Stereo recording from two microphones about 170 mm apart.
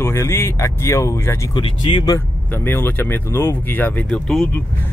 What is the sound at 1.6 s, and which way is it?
Speech, 30° left (ahead or behind).